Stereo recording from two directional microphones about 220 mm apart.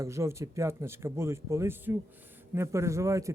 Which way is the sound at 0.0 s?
15° right (ahead or behind).